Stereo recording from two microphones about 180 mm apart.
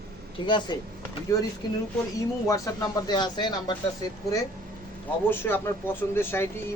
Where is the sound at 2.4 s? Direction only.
15° left (ahead or behind).